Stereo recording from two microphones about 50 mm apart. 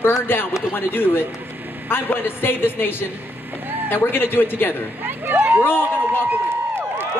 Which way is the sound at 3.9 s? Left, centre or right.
Left.